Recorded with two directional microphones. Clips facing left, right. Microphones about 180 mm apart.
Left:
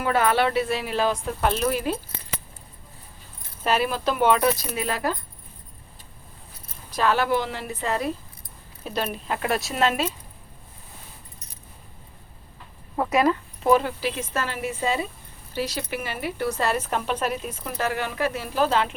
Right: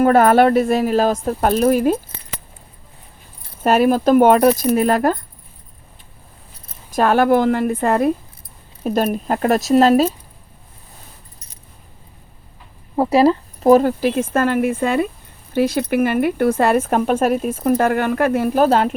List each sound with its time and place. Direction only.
0.0 s speech: 50° right (ahead or behind)
3.6 s speech: 45° right (ahead or behind)
6.9 s speech: 50° right (ahead or behind)
13.0 s speech: 30° right (ahead or behind)